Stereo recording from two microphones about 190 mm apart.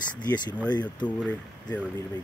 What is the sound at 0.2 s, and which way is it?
Speech, 20° left (ahead or behind).